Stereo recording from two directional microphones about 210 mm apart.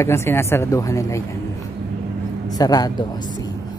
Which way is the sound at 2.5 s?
20° left (ahead or behind).